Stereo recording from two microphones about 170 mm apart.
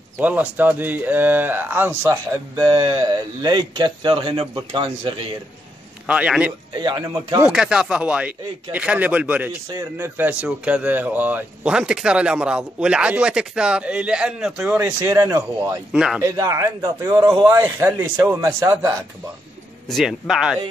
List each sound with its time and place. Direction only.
0.2 s speech: 10° right (ahead or behind)
2.5 s speech: 25° right (ahead or behind)
6.0 s speech: 5° right (ahead or behind)
6.7 s speech: 25° right (ahead or behind)
7.4 s speech: 5° right (ahead or behind)
14.8 s speech: 15° right (ahead or behind)
15.9 s speech: 5° right (ahead or behind)
16.2 s speech: 20° right (ahead or behind)
17.5 s speech: 15° right (ahead or behind)
19.9 s speech: centre (ahead or behind)